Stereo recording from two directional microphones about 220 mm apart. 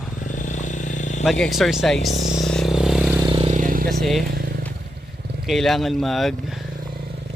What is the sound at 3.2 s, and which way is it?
Vehicle, 20° right (ahead or behind).